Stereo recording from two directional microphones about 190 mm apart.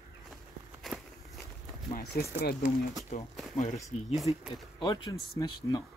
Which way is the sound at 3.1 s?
35° left (ahead or behind).